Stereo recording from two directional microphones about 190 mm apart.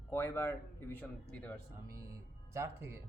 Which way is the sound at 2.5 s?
15° right (ahead or behind).